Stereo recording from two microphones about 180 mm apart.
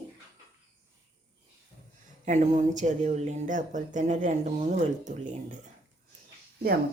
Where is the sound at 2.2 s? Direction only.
40° right (ahead or behind).